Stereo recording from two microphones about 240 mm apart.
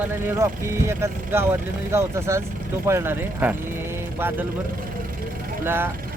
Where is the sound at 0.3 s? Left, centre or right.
Centre.